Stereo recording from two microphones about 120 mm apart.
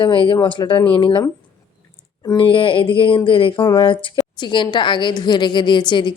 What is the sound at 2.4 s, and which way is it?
A woman's voice, 45° left (ahead or behind).